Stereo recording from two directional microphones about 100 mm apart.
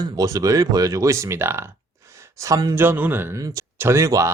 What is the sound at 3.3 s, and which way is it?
Speech, 35° right (ahead or behind).